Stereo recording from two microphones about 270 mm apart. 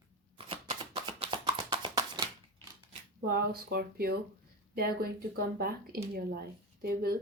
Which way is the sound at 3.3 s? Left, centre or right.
Right.